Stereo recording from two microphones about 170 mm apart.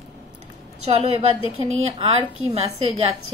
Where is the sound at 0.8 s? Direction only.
35° right (ahead or behind).